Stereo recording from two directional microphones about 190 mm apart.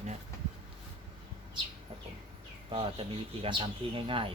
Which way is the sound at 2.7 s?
25° right (ahead or behind).